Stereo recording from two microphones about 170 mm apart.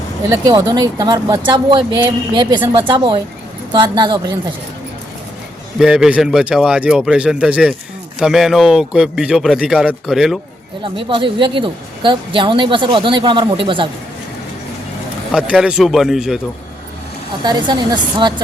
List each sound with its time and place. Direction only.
0.4 s a woman's voice: 25° right (ahead or behind)
5.8 s a man's voice: 5° right (ahead or behind)
10.8 s a woman's voice: 30° right (ahead or behind)
15.3 s a man's voice: 5° right (ahead or behind)
17.4 s a woman's voice: 25° right (ahead or behind)